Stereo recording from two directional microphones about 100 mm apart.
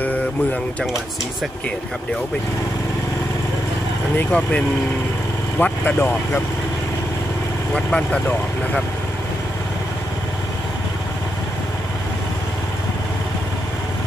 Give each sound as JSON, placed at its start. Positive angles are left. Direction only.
{"t": 0.0, "sound": "a sound", "side_deg": 15}
{"t": 4.3, "sound": "speech", "side_deg": 15}
{"t": 7.7, "sound": "speech", "side_deg": 10}